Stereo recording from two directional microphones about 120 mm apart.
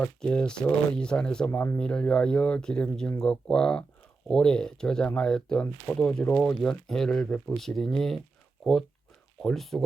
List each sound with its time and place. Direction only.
0.0 s speech: 10° left (ahead or behind)
9.4 s speech: 5° left (ahead or behind)